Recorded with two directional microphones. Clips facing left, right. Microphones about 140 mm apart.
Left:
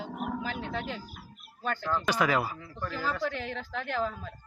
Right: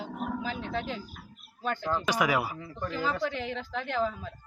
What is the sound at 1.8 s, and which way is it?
Speech, 15° right (ahead or behind).